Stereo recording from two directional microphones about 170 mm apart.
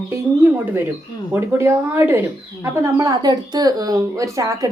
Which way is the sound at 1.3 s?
15° right (ahead or behind).